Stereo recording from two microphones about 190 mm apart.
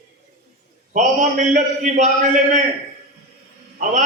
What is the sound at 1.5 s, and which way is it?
A man's voice, 40° right (ahead or behind).